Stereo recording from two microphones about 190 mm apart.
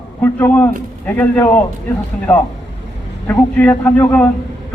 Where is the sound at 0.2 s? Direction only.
10° left (ahead or behind).